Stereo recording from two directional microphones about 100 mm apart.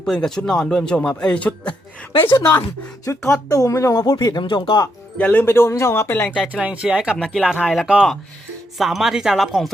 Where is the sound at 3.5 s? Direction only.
30° left (ahead or behind).